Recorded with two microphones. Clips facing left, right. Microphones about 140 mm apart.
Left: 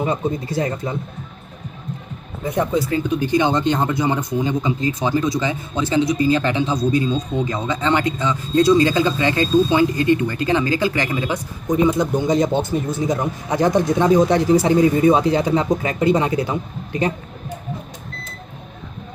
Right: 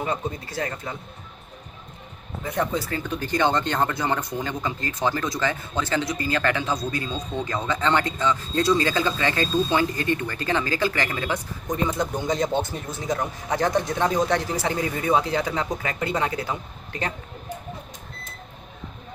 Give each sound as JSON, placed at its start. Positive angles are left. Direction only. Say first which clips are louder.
{"t": 0.0, "sound": "speech", "louder": "left 7 dB", "side_deg": 20}
{"t": 2.5, "sound": "speech", "louder": "left 6 dB", "side_deg": 10}